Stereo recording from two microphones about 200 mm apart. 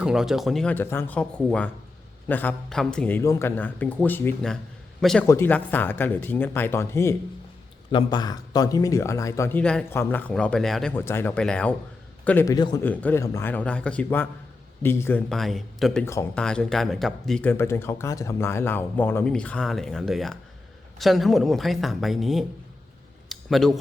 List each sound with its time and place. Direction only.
0.0 s a man's voice: centre (ahead or behind)
5.2 s speech: 10° left (ahead or behind)
12.8 s speech: 10° left (ahead or behind)
16.0 s speech: 15° left (ahead or behind)
16.4 s speech: 5° left (ahead or behind)
23.3 s a sound: centre (ahead or behind)